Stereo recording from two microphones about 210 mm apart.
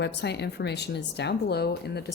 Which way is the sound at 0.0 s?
55° left (ahead or behind).